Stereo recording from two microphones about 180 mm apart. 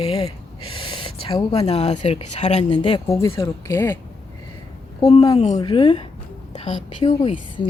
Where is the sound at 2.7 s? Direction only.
25° left (ahead or behind).